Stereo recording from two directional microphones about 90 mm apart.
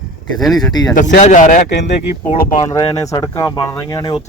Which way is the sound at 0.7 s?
45° left (ahead or behind).